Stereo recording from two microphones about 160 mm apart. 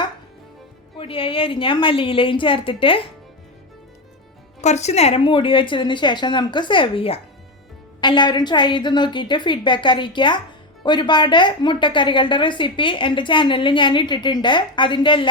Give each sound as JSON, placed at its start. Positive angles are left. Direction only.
{"t": 0.9, "sound": "a woman's voice", "side_deg": 35}
{"t": 4.6, "sound": "a woman's voice", "side_deg": 45}